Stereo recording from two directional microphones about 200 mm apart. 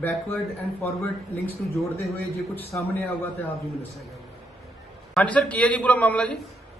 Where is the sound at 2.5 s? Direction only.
10° left (ahead or behind).